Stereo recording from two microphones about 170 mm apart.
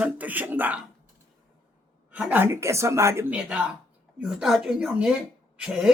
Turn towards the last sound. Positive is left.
turn(degrees=-5)  # may be behind; listen again after turning